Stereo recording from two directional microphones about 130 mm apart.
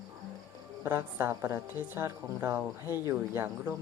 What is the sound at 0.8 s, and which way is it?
A woman's voice, 20° right (ahead or behind).